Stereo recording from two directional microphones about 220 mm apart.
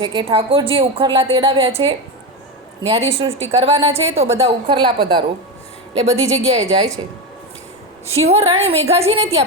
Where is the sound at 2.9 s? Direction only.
25° right (ahead or behind).